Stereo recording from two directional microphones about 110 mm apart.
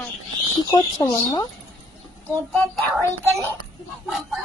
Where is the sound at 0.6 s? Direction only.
45° left (ahead or behind).